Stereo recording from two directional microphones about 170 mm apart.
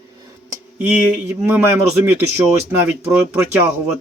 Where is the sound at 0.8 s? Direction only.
10° right (ahead or behind).